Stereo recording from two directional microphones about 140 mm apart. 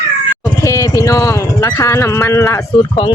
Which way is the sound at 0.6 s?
25° left (ahead or behind).